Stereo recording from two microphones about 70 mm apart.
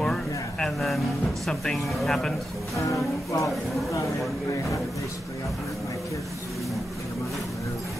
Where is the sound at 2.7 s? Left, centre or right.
Left.